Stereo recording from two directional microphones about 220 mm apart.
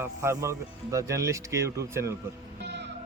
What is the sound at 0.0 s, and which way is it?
A man's voice, 10° right (ahead or behind).